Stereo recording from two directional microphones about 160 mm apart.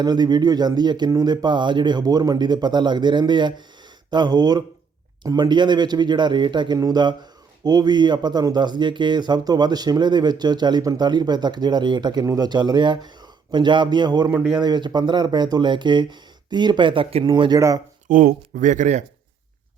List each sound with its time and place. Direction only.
0.0 s speech: 25° right (ahead or behind)
14.3 s speech: 5° right (ahead or behind)
14.6 s speech: 25° right (ahead or behind)
18.1 s speech: 60° right (ahead or behind)